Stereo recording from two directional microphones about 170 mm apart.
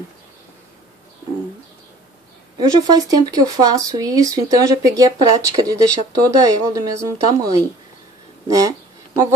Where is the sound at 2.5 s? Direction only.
25° right (ahead or behind).